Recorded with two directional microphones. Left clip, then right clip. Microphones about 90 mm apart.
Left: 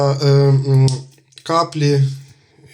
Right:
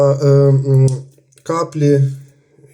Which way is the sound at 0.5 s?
35° right (ahead or behind).